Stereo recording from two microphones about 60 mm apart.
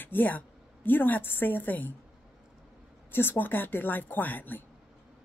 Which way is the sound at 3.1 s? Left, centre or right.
Left.